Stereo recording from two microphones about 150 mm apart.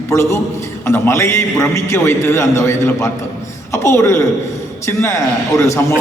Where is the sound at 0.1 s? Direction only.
20° left (ahead or behind).